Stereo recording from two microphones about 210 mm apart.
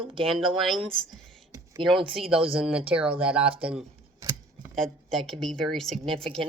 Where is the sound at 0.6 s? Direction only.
Centre (ahead or behind).